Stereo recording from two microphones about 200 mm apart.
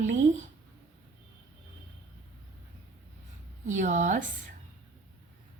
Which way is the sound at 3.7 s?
35° right (ahead or behind).